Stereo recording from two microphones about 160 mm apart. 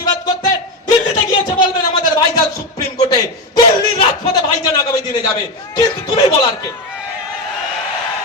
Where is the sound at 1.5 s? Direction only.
30° left (ahead or behind).